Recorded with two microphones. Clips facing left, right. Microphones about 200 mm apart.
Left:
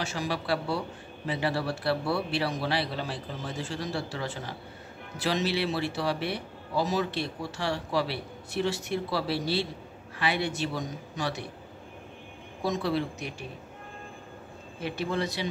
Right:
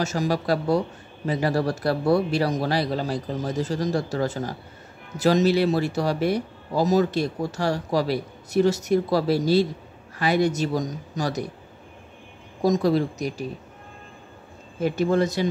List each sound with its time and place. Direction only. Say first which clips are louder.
0.0 s a man's voice: right 8 dB; 45° right (ahead or behind)
12.6 s a man's voice: right 8 dB; 40° right (ahead or behind)
14.8 s speech: right 9 dB; 45° right (ahead or behind)